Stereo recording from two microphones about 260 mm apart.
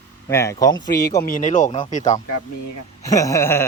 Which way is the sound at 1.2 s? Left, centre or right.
Left.